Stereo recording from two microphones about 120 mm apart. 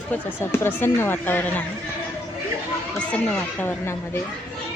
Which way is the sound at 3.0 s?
10° left (ahead or behind).